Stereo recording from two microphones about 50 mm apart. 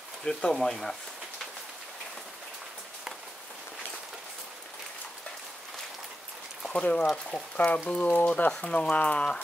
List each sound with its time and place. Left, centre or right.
0.2 s speech: centre
6.7 s speech: left